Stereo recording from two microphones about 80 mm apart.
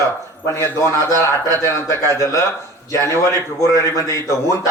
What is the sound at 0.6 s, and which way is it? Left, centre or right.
Speech, left.